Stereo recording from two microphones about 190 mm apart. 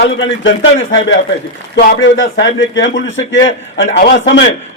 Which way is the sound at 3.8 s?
60° left (ahead or behind).